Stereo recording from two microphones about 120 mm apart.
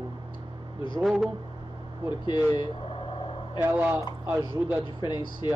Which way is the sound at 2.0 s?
40° left (ahead or behind).